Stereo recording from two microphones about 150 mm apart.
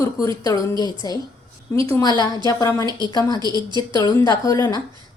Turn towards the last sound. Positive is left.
turn(degrees=25)  # may be behind; listen again after turning